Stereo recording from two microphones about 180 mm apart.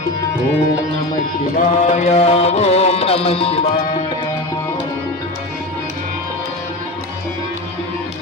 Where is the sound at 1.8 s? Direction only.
40° left (ahead or behind).